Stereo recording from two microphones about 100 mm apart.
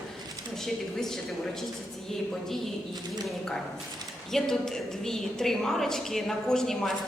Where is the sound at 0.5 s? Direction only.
5° left (ahead or behind).